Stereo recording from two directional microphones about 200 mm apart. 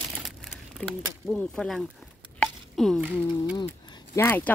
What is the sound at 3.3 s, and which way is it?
Speech, 20° left (ahead or behind).